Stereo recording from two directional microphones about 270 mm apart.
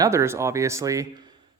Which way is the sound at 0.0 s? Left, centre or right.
Centre.